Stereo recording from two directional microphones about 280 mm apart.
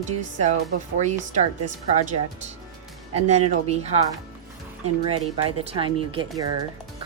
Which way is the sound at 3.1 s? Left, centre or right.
Right.